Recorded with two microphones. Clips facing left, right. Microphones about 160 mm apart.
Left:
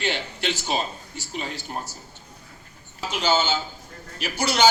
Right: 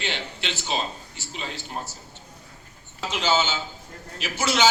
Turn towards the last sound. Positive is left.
turn(degrees=40)  # may be behind; listen again after turning